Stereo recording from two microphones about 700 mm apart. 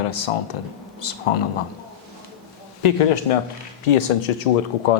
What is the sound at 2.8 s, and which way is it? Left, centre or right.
Speech, left.